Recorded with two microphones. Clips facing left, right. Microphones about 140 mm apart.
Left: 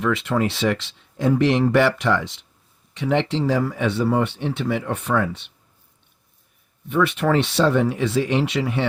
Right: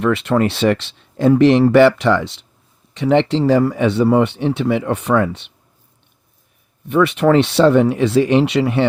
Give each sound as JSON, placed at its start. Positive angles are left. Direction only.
{"t": 0.0, "sound": "speech", "side_deg": -70}
{"t": 6.8, "sound": "speech", "side_deg": -70}